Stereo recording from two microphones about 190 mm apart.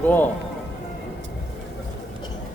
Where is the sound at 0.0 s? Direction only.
10° left (ahead or behind).